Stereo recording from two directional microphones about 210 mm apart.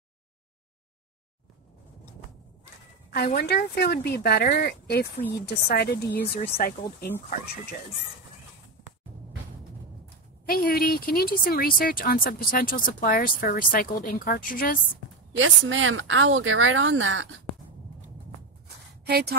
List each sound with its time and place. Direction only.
3.3 s speech: 50° left (ahead or behind)
10.4 s speech: 45° left (ahead or behind)
15.3 s speech: 65° right (ahead or behind)
19.0 s a woman's voice: 50° right (ahead or behind)